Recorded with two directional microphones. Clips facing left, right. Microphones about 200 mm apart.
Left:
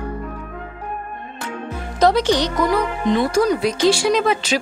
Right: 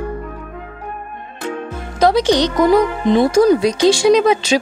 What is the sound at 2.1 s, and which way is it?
Speech, 15° right (ahead or behind).